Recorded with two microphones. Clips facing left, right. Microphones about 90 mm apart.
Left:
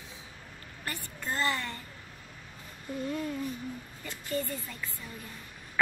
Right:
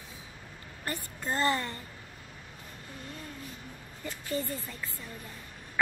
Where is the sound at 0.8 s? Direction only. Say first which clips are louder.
Right 2 dB; 30° right (ahead or behind).